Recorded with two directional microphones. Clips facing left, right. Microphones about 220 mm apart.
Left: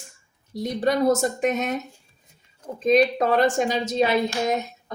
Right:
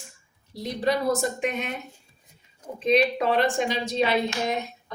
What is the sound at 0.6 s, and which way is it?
Speech, 45° left (ahead or behind).